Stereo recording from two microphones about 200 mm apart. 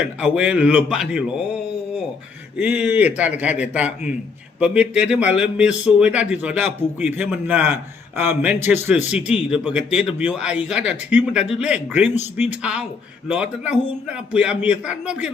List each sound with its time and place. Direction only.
0.0 s speech: 5° right (ahead or behind)
2.6 s a man's voice: 5° right (ahead or behind)
12.1 s speech: 35° left (ahead or behind)
12.5 s speech: 5° right (ahead or behind)